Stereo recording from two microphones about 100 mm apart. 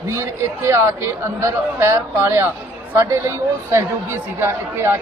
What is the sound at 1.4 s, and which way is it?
A woman's voice, 30° right (ahead or behind).